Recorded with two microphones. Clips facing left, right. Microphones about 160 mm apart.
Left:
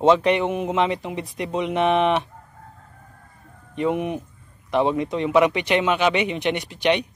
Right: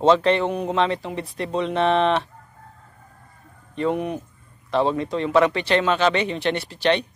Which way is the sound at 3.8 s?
15° left (ahead or behind).